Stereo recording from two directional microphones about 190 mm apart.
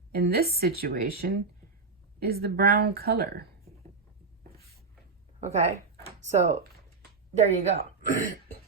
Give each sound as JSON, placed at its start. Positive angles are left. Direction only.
{"t": 0.1, "sound": "a woman's voice", "side_deg": -55}
{"t": 5.4, "sound": "a woman's voice", "side_deg": -35}